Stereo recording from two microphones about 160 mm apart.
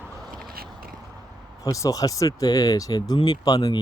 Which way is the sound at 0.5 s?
70° right (ahead or behind).